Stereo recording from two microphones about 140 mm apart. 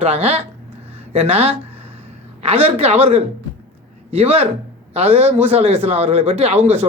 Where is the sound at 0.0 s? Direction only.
45° right (ahead or behind).